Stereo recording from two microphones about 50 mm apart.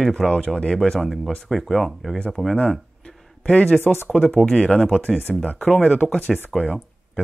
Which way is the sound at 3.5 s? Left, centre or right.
Left.